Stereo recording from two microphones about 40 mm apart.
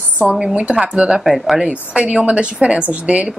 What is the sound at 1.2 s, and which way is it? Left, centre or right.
Speech, centre.